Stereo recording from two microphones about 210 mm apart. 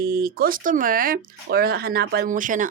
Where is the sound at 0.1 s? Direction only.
45° right (ahead or behind).